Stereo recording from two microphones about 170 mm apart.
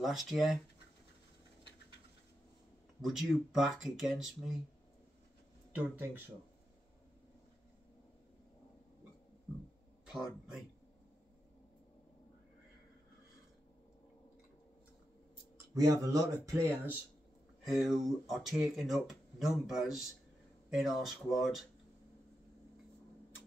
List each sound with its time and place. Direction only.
0.0 s speech: centre (ahead or behind)
3.0 s speech: centre (ahead or behind)
10.0 s speech: 5° right (ahead or behind)
15.7 s speech: 20° right (ahead or behind)
17.6 s speech: centre (ahead or behind)